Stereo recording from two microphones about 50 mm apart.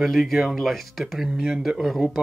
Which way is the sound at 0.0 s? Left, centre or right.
Centre.